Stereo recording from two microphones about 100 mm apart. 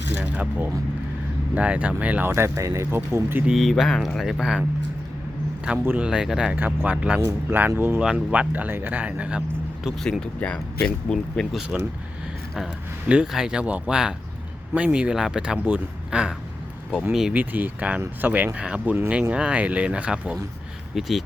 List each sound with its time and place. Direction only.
0.1 s speech: 15° right (ahead or behind)
2.3 s speech: 30° right (ahead or behind)
3.4 s speech: centre (ahead or behind)
5.6 s speech: 15° right (ahead or behind)
10.0 s speech: 5° left (ahead or behind)
13.1 s speech: 10° right (ahead or behind)
17.3 s speech: 20° right (ahead or behind)